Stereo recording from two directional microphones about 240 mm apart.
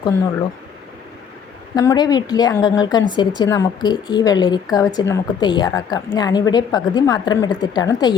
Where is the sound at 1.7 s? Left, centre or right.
Centre.